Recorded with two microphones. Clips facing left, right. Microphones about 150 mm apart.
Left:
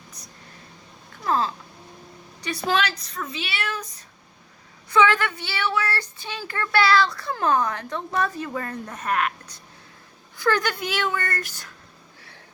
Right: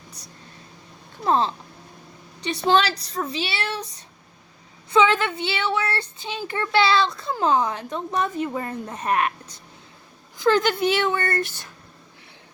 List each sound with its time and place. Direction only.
1.2 s a woman's voice: 25° right (ahead or behind)
4.9 s speech: 20° right (ahead or behind)